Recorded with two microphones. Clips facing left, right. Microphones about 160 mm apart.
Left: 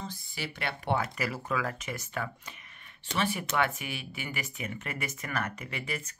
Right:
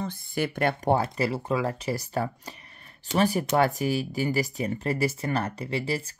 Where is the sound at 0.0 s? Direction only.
55° right (ahead or behind).